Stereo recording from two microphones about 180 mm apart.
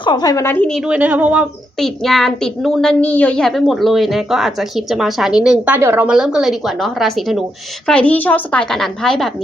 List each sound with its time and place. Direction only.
0.0 s a woman's voice: 25° left (ahead or behind); by 0.8 s 10° left (ahead or behind)
0.9 s a woman's voice: 10° right (ahead or behind)